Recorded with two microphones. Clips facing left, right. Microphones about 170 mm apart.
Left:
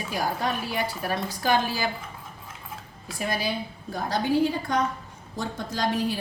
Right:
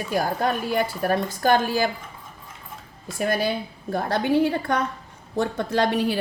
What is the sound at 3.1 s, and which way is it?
A woman's voice, 50° right (ahead or behind).